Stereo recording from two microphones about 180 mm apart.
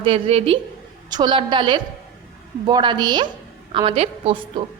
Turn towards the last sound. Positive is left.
turn(degrees=-30)  # may be behind; listen again after turning